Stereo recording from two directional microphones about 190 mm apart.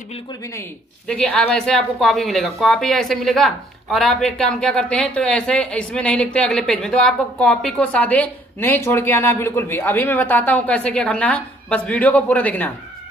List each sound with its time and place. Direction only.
0.1 s a man's voice: 20° left (ahead or behind)